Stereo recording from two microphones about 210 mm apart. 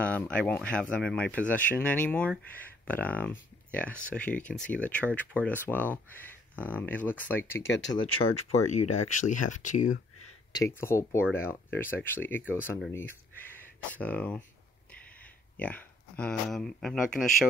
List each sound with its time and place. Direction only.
0.0 s speech: 5° left (ahead or behind)
7.9 s speech: 25° left (ahead or behind)
8.6 s speech: 35° left (ahead or behind)
10.8 s speech: 15° left (ahead or behind)
15.5 s speech: 5° left (ahead or behind)